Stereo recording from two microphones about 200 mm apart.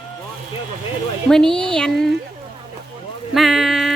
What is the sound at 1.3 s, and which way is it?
Speech, 5° left (ahead or behind).